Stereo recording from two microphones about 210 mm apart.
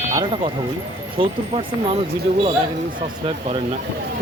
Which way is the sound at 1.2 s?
25° right (ahead or behind).